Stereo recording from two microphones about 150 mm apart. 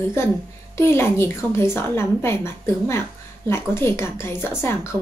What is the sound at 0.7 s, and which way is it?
A woman's voice, 15° left (ahead or behind).